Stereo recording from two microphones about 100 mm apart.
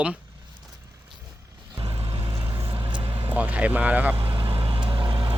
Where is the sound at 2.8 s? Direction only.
50° right (ahead or behind).